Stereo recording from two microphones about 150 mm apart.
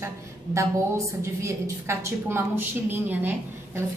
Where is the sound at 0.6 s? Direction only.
20° right (ahead or behind).